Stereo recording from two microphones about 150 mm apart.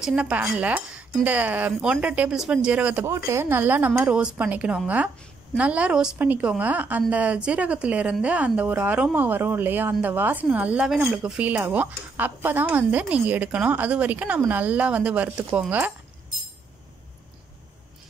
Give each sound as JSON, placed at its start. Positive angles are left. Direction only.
{"t": 0.0, "sound": "a woman's voice", "side_deg": -5}